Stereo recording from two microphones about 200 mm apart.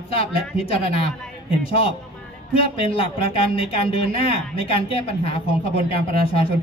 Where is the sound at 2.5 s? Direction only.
30° left (ahead or behind).